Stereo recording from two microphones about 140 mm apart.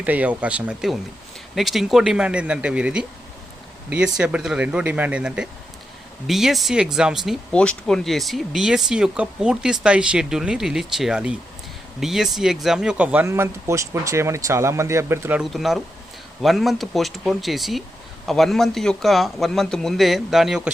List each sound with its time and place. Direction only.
0.0 s speech: 10° right (ahead or behind)
7.5 s speech: 5° left (ahead or behind); by 15.4 s 15° right (ahead or behind)
15.4 s speech: centre (ahead or behind)